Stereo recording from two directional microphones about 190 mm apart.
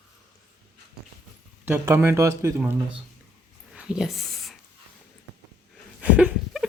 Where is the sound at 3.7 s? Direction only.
5° right (ahead or behind).